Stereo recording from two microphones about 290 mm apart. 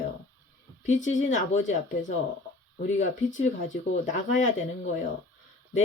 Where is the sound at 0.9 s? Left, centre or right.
Left.